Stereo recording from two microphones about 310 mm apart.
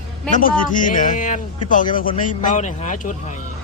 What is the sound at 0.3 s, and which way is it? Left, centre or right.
Speech, left.